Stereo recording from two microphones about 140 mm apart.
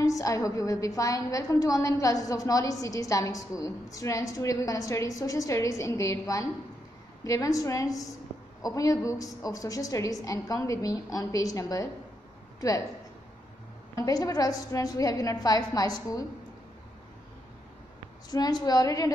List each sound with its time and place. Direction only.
0.0 s a woman's voice: 25° left (ahead or behind)
13.9 s a woman's voice: 25° left (ahead or behind)
18.3 s a woman's voice: 30° left (ahead or behind)